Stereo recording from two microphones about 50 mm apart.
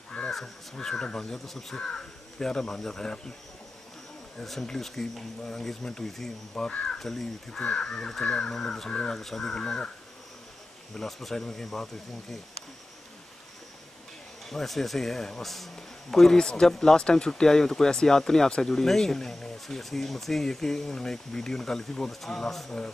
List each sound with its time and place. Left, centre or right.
0.3 s speech: centre
4.4 s speech: centre
7.0 s speech: centre
11.0 s speech: centre
14.4 s speech: centre